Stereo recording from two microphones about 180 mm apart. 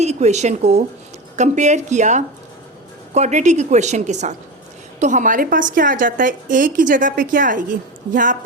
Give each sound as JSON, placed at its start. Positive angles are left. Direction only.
{"t": 0.0, "sound": "a woman's voice", "side_deg": -40}